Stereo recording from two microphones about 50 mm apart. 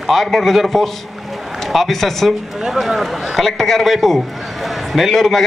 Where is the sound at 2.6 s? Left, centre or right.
Centre.